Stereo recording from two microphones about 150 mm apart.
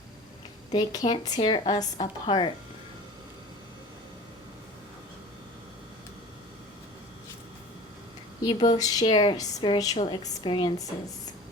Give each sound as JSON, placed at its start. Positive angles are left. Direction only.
{"t": 0.7, "sound": "speech", "side_deg": 30}
{"t": 8.4, "sound": "speech", "side_deg": 30}